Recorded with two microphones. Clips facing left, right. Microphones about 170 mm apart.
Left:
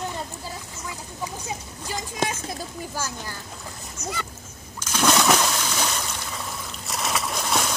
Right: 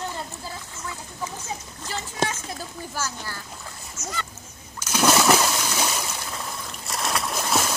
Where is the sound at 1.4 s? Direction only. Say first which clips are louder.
Left 1 dB; 15° left (ahead or behind).